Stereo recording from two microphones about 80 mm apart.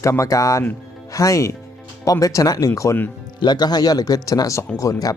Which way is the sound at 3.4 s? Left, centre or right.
Left.